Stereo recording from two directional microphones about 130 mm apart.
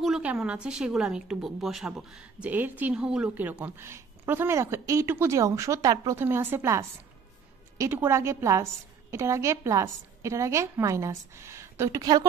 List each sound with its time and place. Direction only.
0.0 s a woman's voice: 5° right (ahead or behind); by 12.3 s 30° right (ahead or behind)